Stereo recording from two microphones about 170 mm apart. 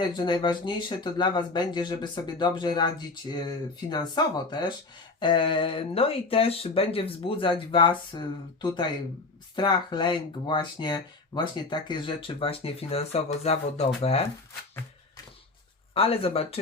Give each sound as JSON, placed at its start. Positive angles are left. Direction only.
{"t": 0.0, "sound": "speech", "side_deg": 25}
{"t": 16.0, "sound": "speech", "side_deg": 35}